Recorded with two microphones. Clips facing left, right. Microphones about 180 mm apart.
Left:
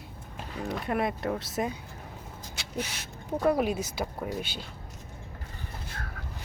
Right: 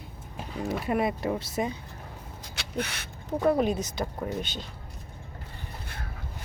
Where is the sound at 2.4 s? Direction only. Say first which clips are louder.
Right 3 dB; 65° right (ahead or behind).